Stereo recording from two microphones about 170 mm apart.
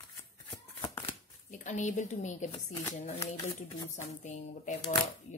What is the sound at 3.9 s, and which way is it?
Speech, 45° left (ahead or behind).